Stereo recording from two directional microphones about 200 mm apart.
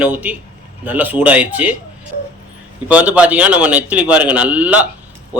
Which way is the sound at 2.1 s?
45° left (ahead or behind).